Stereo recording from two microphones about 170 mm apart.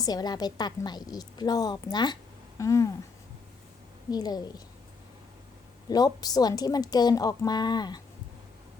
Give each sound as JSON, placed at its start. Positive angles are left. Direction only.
{"t": 0.0, "sound": "a woman's voice", "side_deg": 25}
{"t": 4.1, "sound": "a woman's voice", "side_deg": 25}
{"t": 5.9, "sound": "a woman's voice", "side_deg": 20}